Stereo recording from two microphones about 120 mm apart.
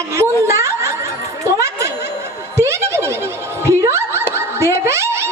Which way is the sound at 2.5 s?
25° right (ahead or behind).